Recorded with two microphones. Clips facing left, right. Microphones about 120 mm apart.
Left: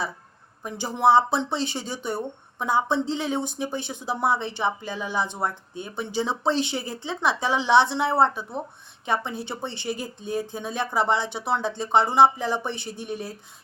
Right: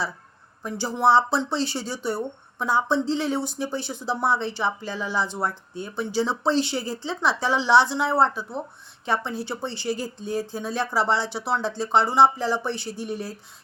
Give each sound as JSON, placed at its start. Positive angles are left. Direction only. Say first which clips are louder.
{"t": 0.6, "sound": "speech", "louder": "even", "side_deg": 15}